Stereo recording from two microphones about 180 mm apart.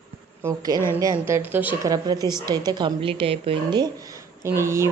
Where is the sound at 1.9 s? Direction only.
20° right (ahead or behind).